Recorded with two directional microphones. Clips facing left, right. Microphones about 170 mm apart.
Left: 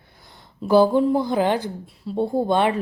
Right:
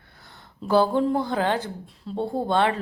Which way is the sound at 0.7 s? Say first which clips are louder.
Left 4 dB; 10° left (ahead or behind).